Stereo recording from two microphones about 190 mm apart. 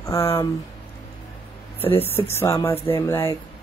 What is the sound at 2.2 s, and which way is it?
Speech, 15° left (ahead or behind).